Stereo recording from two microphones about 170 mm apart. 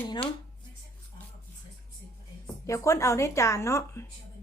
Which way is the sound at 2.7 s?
15° left (ahead or behind).